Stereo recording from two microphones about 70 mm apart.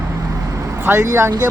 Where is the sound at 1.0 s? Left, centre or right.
Right.